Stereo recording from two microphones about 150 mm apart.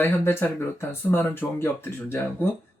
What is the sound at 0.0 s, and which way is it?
Speech, 15° left (ahead or behind).